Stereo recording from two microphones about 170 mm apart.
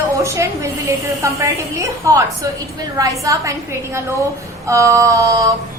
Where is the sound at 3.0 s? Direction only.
20° right (ahead or behind).